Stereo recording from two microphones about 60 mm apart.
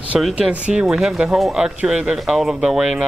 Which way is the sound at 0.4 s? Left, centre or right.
Right.